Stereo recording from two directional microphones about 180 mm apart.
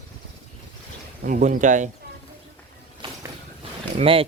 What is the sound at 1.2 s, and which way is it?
Speech, 45° right (ahead or behind).